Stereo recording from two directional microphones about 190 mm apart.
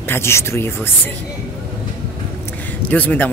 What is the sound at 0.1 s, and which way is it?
Speech, 15° left (ahead or behind).